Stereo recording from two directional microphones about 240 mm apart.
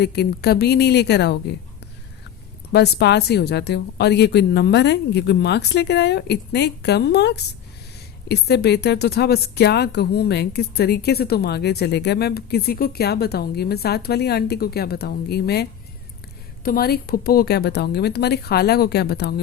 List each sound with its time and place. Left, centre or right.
0.0 s a woman's voice: left
2.7 s a woman's voice: left
16.6 s speech: left